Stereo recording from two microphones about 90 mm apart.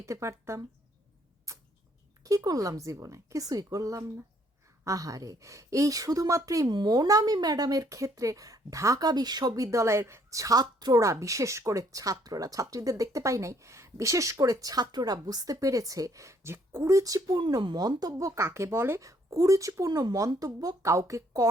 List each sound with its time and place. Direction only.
0.0 s speech: 30° right (ahead or behind)
1.5 s tick-tock: 35° right (ahead or behind)
2.2 s speech: 40° right (ahead or behind)
6.7 s speech: 55° right (ahead or behind)
11.0 s speech: 35° right (ahead or behind)